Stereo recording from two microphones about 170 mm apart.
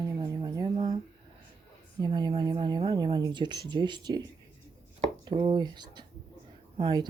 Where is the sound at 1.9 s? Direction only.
25° right (ahead or behind).